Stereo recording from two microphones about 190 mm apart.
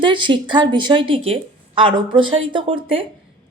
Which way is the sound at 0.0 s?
25° right (ahead or behind).